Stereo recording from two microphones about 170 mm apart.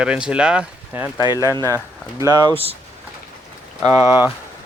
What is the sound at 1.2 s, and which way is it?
Speech, 20° left (ahead or behind).